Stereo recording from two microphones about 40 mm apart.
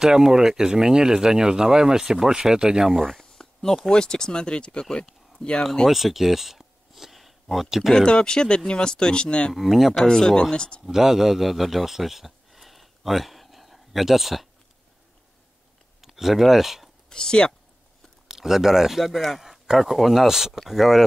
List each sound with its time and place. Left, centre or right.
0.0 s speech: centre
3.2 s a sound: centre
3.9 s speech: centre
5.9 s speech: centre
7.9 s speech: centre
9.5 s speech: centre
10.0 s speech: centre
10.9 s a man's voice: centre
16.0 s speech: centre
17.1 s speech: left
18.3 s speech: centre